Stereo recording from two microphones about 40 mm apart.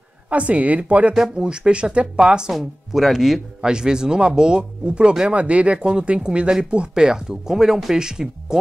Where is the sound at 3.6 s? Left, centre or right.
Centre.